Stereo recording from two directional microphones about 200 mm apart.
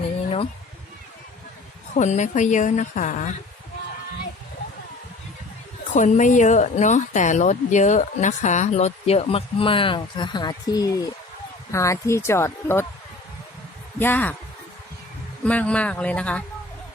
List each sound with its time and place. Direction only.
2.0 s a woman's voice: 35° left (ahead or behind)
5.9 s a woman's voice: 40° left (ahead or behind); by 12.8 s 10° left (ahead or behind)
14.0 s speech: 10° left (ahead or behind)
15.4 s speech: 5° left (ahead or behind)